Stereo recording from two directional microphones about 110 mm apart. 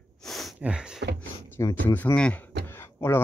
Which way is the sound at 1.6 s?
30° left (ahead or behind).